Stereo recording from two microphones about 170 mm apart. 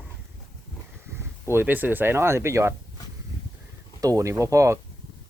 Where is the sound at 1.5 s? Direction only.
10° right (ahead or behind).